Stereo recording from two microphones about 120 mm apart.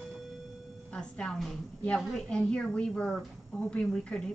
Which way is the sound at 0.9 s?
5° left (ahead or behind).